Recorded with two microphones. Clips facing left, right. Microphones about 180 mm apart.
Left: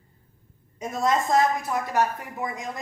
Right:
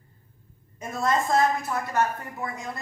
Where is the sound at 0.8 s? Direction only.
15° left (ahead or behind).